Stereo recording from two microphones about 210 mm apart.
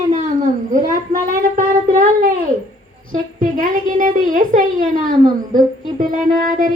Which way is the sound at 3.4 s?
40° right (ahead or behind).